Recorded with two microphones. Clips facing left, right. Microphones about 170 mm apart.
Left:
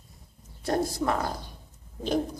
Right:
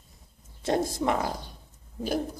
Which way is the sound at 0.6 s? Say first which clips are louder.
Right 1 dB; 20° right (ahead or behind).